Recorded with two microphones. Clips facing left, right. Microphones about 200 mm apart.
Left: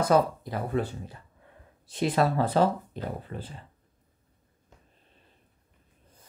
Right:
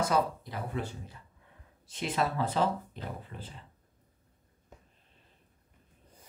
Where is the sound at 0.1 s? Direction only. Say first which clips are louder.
Left 6 dB; 50° left (ahead or behind).